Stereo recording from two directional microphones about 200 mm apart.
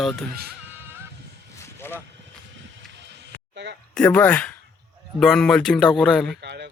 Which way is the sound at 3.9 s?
5° left (ahead or behind).